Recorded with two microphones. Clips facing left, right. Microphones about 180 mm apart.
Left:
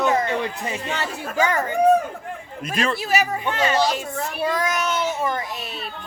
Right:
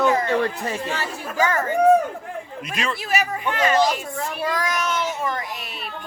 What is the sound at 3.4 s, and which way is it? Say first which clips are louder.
Speech: right 1 dB; 25° left (ahead or behind).